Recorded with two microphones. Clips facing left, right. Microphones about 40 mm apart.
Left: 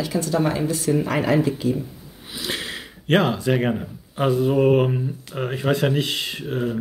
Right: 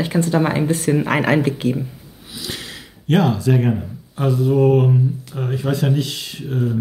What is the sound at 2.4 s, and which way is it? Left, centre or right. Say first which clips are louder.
Speech: left 2 dB; left.